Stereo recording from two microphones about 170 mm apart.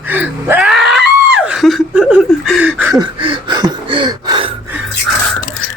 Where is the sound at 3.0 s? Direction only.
30° right (ahead or behind).